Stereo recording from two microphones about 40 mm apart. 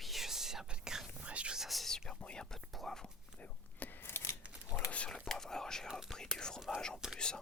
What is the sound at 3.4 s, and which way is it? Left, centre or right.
Whispering, left.